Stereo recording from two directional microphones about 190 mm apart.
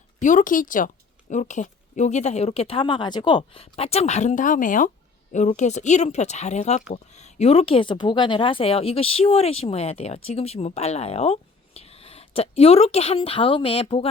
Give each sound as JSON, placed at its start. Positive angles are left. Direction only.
{"t": 0.2, "sound": "a woman's voice", "side_deg": 45}